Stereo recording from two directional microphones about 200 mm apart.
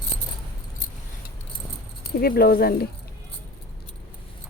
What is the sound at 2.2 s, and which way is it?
Speech, 50° left (ahead or behind).